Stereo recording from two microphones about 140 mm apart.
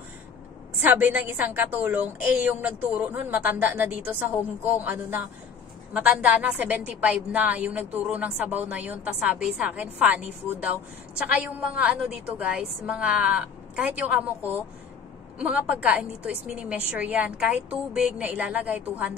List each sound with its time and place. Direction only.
0.8 s a woman's voice: 10° right (ahead or behind)